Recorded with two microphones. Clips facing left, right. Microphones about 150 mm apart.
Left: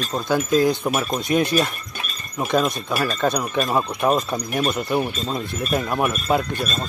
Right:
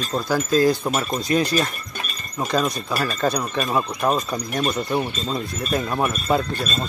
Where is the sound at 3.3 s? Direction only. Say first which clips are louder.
Left 1 dB; 10° left (ahead or behind).